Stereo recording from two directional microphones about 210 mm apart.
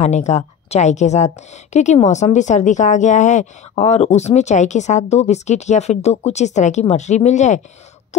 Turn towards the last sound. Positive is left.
turn(degrees=35)  # may be behind; listen again after turning